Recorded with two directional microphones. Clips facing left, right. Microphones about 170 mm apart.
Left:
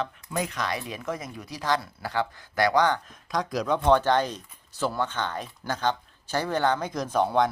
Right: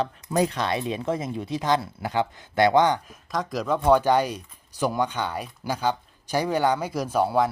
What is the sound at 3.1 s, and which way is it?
Speech, centre (ahead or behind).